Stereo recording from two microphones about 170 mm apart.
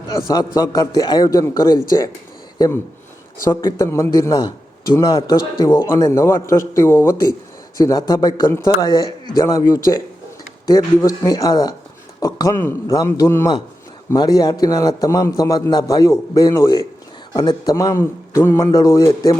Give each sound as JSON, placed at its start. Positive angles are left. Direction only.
{"t": 0.1, "sound": "a man's voice", "side_deg": 20}
{"t": 3.4, "sound": "a man's voice", "side_deg": 20}